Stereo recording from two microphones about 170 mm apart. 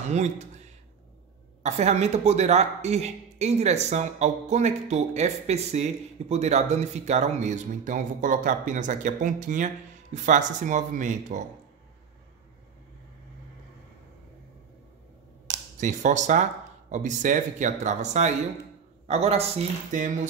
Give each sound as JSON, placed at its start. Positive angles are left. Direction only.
{"t": 0.1, "sound": "speech", "side_deg": -40}
{"t": 1.6, "sound": "speech", "side_deg": -40}
{"t": 15.5, "sound": "a sound", "side_deg": -20}
{"t": 15.8, "sound": "speech", "side_deg": -45}